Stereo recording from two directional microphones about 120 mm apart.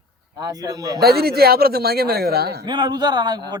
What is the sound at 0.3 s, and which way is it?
Speech, 35° right (ahead or behind).